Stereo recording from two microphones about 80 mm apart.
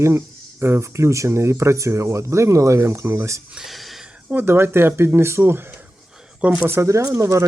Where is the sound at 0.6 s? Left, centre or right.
Right.